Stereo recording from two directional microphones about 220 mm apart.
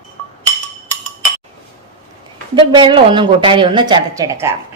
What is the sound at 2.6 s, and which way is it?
Speech, 20° right (ahead or behind).